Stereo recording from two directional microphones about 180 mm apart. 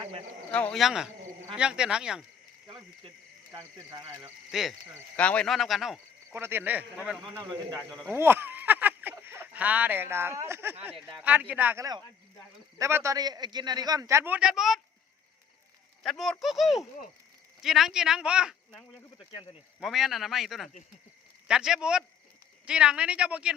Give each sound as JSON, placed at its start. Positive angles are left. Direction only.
{"t": 0.5, "sound": "speech", "side_deg": 5}
{"t": 2.6, "sound": "a sound", "side_deg": -25}
{"t": 3.5, "sound": "speech", "side_deg": -20}
{"t": 4.5, "sound": "speech", "side_deg": 0}
{"t": 6.3, "sound": "a man's voice", "side_deg": -10}
{"t": 16.0, "sound": "speech", "side_deg": 0}
{"t": 19.1, "sound": "speech", "side_deg": 30}
{"t": 19.8, "sound": "speech", "side_deg": 0}